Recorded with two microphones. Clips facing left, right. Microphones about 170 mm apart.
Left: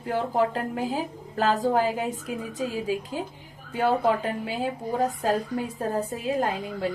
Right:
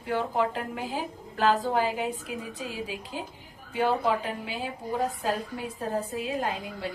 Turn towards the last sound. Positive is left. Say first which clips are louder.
# left 5 dB
turn(degrees=40)  # may be behind; listen again after turning